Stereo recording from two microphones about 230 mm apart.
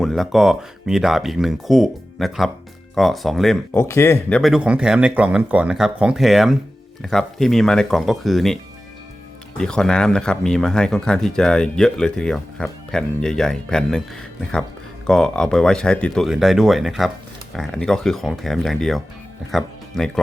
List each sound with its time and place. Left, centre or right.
0.0 s speech: centre
9.6 s speech: centre
15.0 s speech: centre